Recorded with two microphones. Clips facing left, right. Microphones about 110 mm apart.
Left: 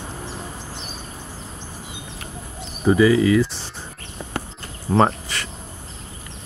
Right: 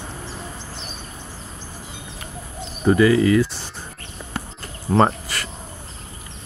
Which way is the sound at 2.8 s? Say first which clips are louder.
Even; 5° left (ahead or behind).